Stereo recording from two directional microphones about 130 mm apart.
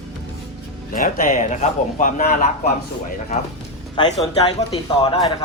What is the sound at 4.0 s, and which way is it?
Speech, 35° left (ahead or behind).